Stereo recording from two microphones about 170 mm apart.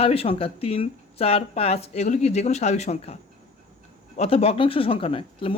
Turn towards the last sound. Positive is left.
turn(degrees=35)  # may be behind; listen again after turning